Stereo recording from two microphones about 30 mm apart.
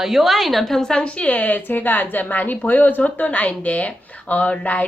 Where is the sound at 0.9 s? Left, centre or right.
Left.